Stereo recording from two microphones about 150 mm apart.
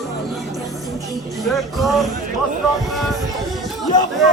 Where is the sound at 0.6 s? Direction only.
20° right (ahead or behind).